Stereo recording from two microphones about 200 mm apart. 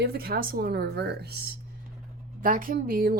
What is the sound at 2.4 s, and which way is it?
Speech, 45° right (ahead or behind).